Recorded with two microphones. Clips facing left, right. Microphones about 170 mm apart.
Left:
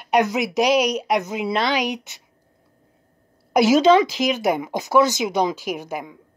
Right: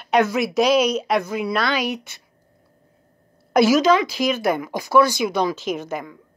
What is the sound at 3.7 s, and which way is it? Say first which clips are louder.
Speech: left 2 dB; 25° left (ahead or behind).